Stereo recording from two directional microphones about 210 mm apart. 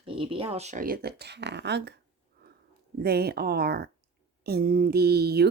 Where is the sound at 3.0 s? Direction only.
50° right (ahead or behind).